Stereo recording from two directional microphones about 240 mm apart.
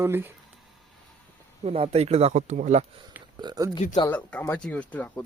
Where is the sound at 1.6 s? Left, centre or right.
Right.